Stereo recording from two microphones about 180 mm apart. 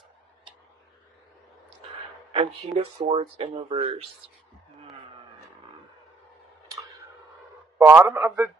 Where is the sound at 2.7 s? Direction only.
35° right (ahead or behind).